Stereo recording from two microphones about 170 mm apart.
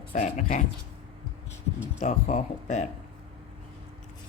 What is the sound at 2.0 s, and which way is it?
Speech, 45° left (ahead or behind).